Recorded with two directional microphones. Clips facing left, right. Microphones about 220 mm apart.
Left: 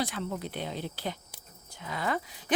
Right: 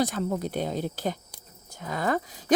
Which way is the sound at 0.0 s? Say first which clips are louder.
Right 6 dB; 45° right (ahead or behind).